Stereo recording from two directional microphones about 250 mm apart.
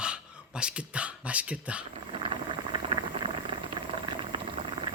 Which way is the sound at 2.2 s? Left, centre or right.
Centre.